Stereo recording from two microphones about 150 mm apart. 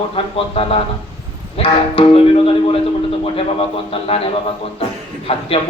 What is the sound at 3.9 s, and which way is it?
Speech, 40° left (ahead or behind).